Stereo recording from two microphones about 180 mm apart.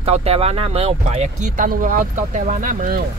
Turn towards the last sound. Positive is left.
turn(degrees=-55)  # may be behind; listen again after turning